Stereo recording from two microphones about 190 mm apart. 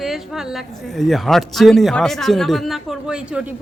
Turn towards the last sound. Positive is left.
turn(degrees=-5)  # may be behind; listen again after turning